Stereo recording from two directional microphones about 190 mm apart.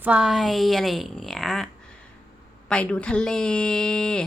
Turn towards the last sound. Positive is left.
turn(degrees=5)  # may be behind; listen again after turning